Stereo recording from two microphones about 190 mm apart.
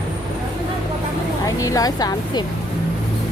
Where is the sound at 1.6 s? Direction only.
20° left (ahead or behind).